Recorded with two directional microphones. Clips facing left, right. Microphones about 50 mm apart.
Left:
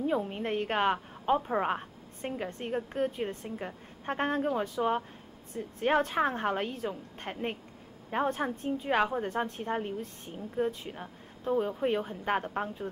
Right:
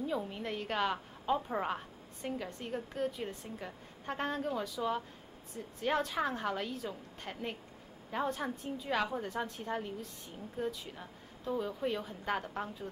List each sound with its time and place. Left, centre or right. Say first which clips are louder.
0.0 s a woman's voice: left 6 dB; left